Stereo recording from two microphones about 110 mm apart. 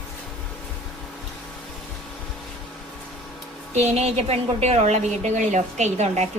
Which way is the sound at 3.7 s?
85° right.